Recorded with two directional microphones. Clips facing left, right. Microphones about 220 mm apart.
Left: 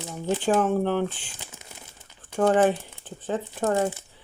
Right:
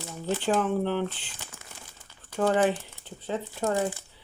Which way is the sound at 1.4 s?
20° left (ahead or behind).